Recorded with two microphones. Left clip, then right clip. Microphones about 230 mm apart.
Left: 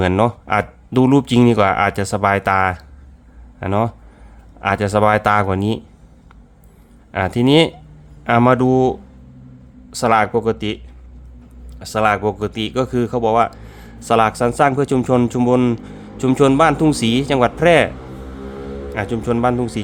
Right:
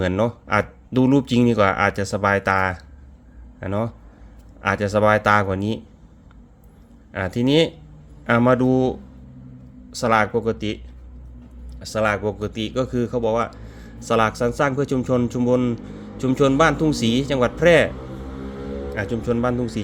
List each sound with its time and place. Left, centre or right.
0.0 s speech: centre
7.1 s speech: centre
11.8 s speech: left
18.9 s speech: centre